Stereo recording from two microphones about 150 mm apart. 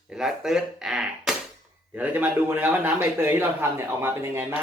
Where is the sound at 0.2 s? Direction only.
5° right (ahead or behind).